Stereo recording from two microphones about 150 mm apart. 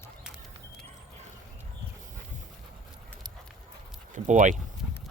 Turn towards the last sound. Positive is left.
turn(degrees=-55)  # may be behind; listen again after turning